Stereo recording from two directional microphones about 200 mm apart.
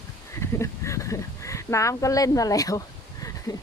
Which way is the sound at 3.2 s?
15° left (ahead or behind).